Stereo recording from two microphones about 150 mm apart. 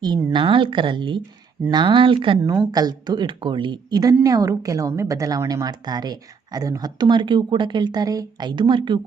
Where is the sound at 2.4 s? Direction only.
15° right (ahead or behind).